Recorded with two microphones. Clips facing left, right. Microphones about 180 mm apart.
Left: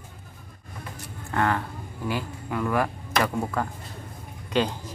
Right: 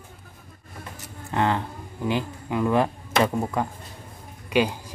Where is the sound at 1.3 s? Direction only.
20° right (ahead or behind).